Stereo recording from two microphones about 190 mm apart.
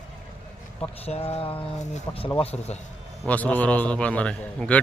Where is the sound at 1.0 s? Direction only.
30° left (ahead or behind).